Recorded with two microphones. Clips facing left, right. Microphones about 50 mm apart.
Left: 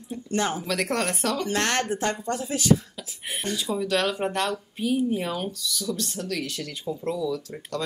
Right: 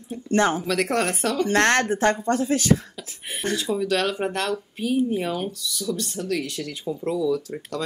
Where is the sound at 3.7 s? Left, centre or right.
Centre.